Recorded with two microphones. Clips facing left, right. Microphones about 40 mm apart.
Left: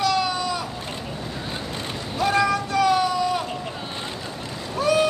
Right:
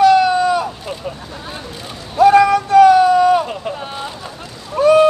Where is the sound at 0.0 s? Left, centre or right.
Right.